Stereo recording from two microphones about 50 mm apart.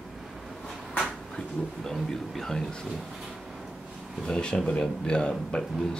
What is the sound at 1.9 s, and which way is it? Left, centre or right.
Speech, centre.